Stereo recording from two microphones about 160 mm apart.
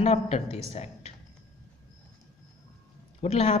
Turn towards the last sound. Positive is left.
turn(degrees=40)  # may be behind; listen again after turning